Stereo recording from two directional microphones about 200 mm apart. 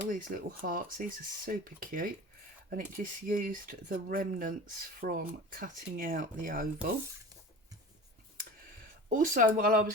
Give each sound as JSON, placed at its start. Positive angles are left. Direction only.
{"t": 0.1, "sound": "speech", "side_deg": -40}
{"t": 9.0, "sound": "speech", "side_deg": -40}